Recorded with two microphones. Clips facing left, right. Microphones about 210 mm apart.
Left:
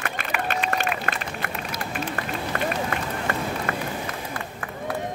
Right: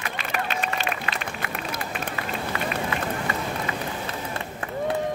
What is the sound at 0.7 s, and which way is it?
Run, 50° left (ahead or behind).